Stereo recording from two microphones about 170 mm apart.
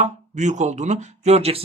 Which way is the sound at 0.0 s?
45° right (ahead or behind).